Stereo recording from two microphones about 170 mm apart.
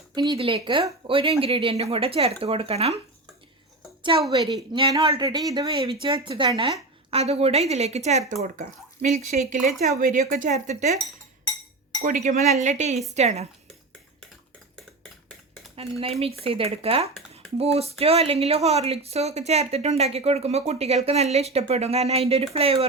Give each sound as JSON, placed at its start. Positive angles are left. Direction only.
{"t": 0.1, "sound": "speech", "side_deg": -25}
{"t": 4.1, "sound": "speech", "side_deg": -30}
{"t": 12.0, "sound": "speech", "side_deg": -50}
{"t": 15.7, "sound": "dishes", "side_deg": -35}
{"t": 16.4, "sound": "speech", "side_deg": -35}